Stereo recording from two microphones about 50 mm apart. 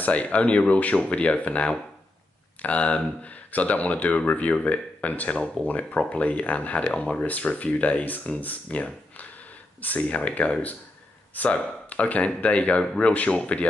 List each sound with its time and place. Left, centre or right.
0.0 s speech: left